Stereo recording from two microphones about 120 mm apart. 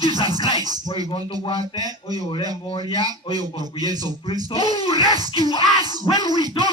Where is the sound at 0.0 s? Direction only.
35° right (ahead or behind).